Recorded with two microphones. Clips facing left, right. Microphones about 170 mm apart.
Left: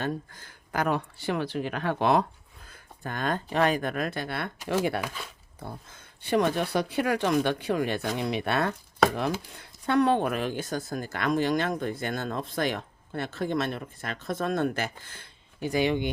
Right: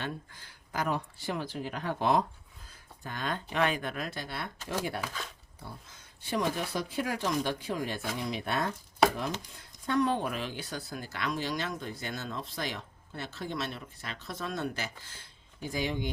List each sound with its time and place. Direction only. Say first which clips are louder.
0.0 s speech: left 7 dB; 45° left (ahead or behind); by 2.2 s 70° left (ahead or behind)
2.6 s speech: left 6 dB; 55° left (ahead or behind)
5.5 s speech: left 7 dB; 55° left (ahead or behind); by 16.0 s 70° left (ahead or behind)